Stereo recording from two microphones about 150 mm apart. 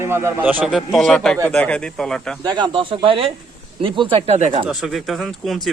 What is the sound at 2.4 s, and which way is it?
Speech, 30° right (ahead or behind).